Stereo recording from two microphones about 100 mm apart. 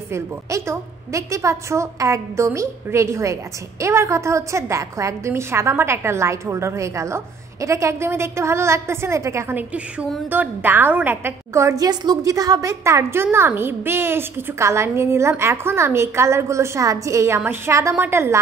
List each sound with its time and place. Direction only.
0.1 s a woman's voice: 30° right (ahead or behind)
9.6 s a woman's voice: 15° right (ahead or behind)
11.8 s a woman's voice: 40° right (ahead or behind); by 18.4 s 25° right (ahead or behind)